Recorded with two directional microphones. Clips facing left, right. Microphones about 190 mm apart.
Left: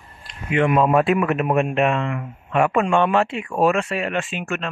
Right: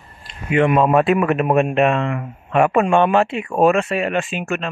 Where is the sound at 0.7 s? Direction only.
60° right (ahead or behind).